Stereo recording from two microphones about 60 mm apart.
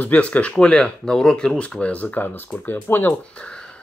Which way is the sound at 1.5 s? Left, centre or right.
Left.